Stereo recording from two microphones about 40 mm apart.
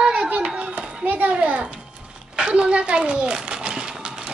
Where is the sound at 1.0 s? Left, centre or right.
Right.